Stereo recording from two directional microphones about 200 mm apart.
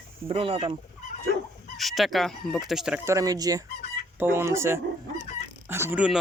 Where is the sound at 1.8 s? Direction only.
Centre (ahead or behind).